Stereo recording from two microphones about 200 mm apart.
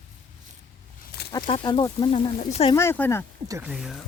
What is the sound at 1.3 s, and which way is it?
Speech, 25° left (ahead or behind).